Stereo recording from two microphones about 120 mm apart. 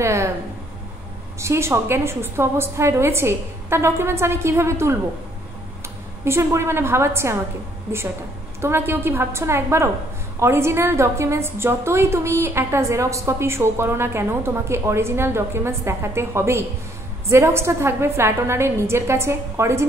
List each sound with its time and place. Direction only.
0.0 s a sound: 25° right (ahead or behind)
1.4 s a woman's voice: 20° right (ahead or behind)
6.2 s a woman's voice: 20° right (ahead or behind)
8.5 s a woman's voice: 20° right (ahead or behind)